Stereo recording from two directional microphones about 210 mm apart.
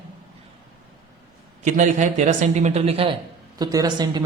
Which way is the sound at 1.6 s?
35° right (ahead or behind).